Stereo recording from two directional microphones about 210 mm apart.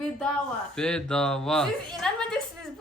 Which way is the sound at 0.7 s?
5° left (ahead or behind).